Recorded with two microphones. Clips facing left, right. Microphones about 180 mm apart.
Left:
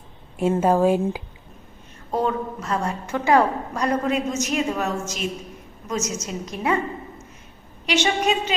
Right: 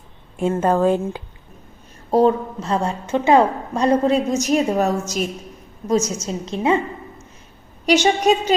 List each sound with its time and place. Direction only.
0.5 s a woman's voice: 5° left (ahead or behind)
2.0 s a woman's voice: 35° right (ahead or behind)
7.9 s a woman's voice: 40° right (ahead or behind)